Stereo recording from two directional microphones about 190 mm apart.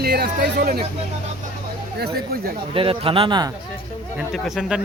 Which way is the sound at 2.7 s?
30° right (ahead or behind).